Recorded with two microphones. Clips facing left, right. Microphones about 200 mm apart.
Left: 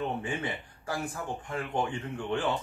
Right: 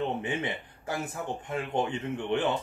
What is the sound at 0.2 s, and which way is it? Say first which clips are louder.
Speech: right 2 dB; 20° right (ahead or behind).